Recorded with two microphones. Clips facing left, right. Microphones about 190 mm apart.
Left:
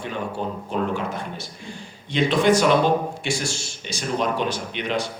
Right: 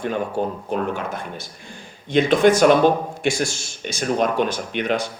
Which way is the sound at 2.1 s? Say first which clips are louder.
Right 3 dB; 50° right (ahead or behind).